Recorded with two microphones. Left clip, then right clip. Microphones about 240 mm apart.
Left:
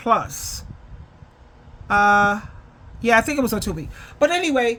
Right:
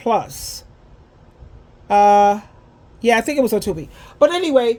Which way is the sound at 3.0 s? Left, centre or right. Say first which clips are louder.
Right 2 dB; centre.